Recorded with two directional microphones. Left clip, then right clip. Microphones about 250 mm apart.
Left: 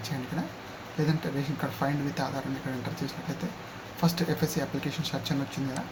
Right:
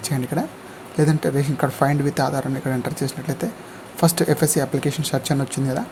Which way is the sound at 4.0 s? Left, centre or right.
Right.